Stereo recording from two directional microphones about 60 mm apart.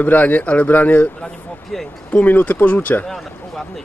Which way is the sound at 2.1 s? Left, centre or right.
Left.